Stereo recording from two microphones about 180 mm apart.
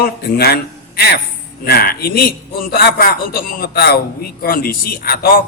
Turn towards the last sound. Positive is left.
turn(degrees=60)  # may be behind; listen again after turning